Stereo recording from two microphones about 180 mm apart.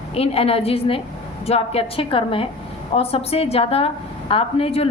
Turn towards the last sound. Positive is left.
turn(degrees=30)  # may be behind; listen again after turning